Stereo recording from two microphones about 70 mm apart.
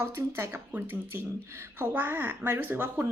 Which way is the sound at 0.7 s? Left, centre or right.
Right.